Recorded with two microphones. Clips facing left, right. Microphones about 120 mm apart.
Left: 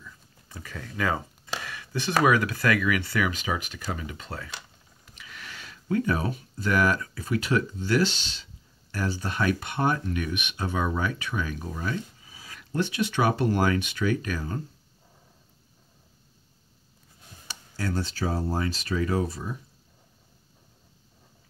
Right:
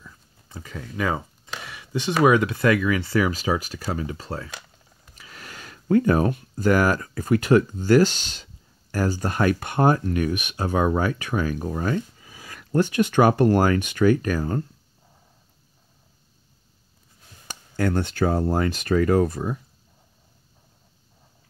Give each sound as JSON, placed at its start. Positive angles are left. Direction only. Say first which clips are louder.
{"t": 0.0, "sound": "a sound", "louder": "even", "side_deg": -25}
{"t": 1.6, "sound": "speech", "louder": "right 7 dB", "side_deg": -20}
{"t": 12.2, "sound": "speech", "louder": "right 4 dB", "side_deg": -55}
{"t": 17.5, "sound": "speech", "louder": "right 7 dB", "side_deg": -55}